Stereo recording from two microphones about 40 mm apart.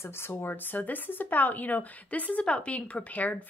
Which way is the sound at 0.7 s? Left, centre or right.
Left.